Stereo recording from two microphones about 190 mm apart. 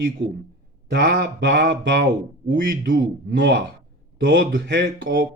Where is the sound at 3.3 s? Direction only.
70° right (ahead or behind).